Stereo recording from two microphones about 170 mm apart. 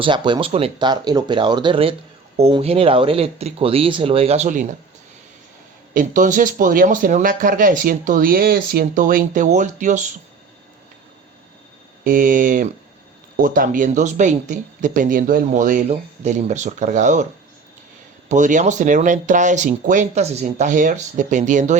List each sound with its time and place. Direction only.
0.0 s speech: 30° right (ahead or behind); by 4.7 s 45° right (ahead or behind)
5.9 s speech: 50° right (ahead or behind)
12.0 s speech: 50° right (ahead or behind)
18.3 s speech: 45° right (ahead or behind)